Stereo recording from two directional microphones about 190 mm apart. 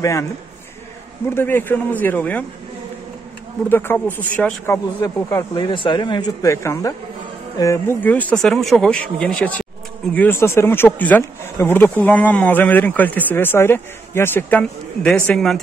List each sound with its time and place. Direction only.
0.0 s speech: 15° left (ahead or behind)
1.3 s speech: 10° left (ahead or behind)
3.6 s speech: 10° left (ahead or behind)